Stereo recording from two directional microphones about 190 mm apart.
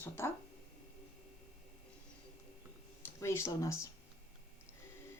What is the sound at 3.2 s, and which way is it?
Speech, 15° left (ahead or behind).